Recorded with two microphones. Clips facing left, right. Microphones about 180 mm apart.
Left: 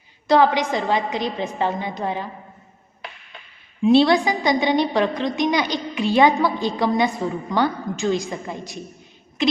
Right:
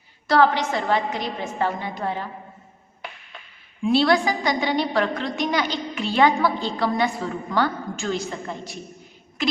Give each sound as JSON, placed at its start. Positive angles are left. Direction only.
{"t": 0.3, "sound": "a woman's voice", "side_deg": 15}
{"t": 3.8, "sound": "a woman's voice", "side_deg": 20}